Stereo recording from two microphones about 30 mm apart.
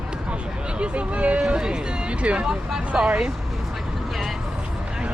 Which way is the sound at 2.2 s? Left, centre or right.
Right.